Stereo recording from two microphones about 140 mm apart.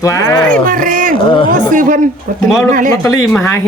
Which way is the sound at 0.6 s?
80° right.